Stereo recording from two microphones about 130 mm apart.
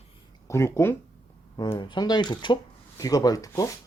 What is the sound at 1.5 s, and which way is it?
Speech, 35° left (ahead or behind).